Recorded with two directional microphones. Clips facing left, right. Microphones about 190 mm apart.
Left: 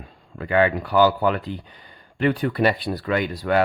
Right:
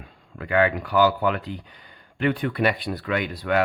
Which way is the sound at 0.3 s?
30° left (ahead or behind).